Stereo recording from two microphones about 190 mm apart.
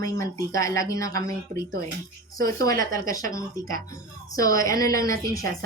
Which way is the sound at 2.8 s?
20° left (ahead or behind).